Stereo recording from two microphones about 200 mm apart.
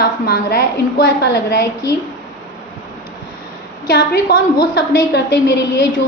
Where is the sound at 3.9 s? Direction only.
50° left (ahead or behind).